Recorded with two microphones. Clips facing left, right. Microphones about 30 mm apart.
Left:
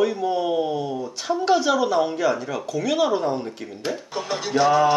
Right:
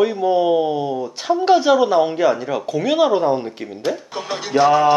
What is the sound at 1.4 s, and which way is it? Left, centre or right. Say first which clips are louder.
A woman's voice: right 6 dB; centre.